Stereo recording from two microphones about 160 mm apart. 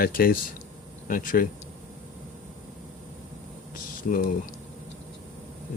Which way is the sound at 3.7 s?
60° left (ahead or behind).